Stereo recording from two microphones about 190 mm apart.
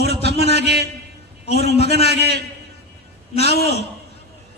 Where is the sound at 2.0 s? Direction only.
60° right (ahead or behind).